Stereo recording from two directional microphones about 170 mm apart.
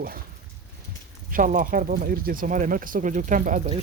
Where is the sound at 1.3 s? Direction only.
55° right (ahead or behind).